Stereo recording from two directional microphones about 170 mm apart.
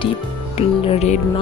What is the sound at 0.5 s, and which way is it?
Speech, 35° left (ahead or behind).